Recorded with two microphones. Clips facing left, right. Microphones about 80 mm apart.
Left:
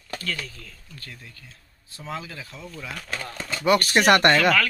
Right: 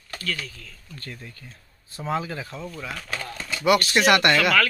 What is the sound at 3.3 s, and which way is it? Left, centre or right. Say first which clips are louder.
Speech: even; left.